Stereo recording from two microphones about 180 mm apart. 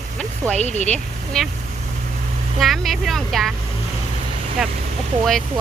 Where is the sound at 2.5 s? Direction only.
Centre (ahead or behind).